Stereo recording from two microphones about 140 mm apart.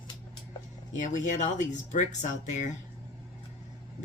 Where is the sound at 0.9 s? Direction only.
60° left (ahead or behind).